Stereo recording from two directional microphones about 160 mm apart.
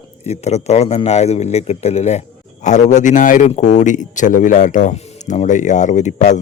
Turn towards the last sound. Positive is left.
turn(degrees=50)  # may be behind; listen again after turning